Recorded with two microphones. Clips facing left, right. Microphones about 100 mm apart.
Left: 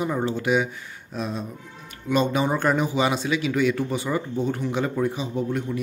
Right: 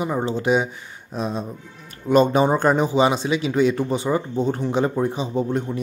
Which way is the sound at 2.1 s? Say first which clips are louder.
Right 6 dB; 40° right (ahead or behind).